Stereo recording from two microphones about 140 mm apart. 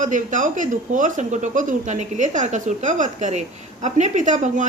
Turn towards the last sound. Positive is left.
turn(degrees=-60)  # may be behind; listen again after turning